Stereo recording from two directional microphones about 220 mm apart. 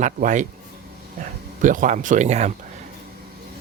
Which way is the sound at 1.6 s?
35° right (ahead or behind).